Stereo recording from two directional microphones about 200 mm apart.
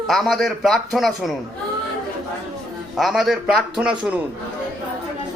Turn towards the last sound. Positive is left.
turn(degrees=-5)  # may be behind; listen again after turning